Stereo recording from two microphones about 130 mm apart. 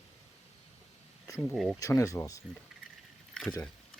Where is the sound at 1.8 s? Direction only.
25° left (ahead or behind).